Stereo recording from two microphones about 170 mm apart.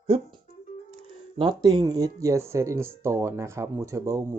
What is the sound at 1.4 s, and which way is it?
Speech, 25° right (ahead or behind).